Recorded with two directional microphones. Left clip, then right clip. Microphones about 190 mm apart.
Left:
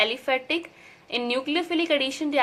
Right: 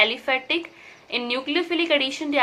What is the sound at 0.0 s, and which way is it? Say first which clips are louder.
A woman's voice: right 3 dB; 20° left (ahead or behind).